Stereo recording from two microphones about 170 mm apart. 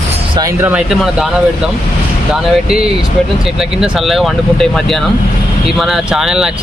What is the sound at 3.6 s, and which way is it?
Speech, centre (ahead or behind).